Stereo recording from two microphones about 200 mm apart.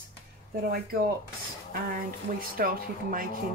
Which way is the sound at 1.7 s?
45° right (ahead or behind).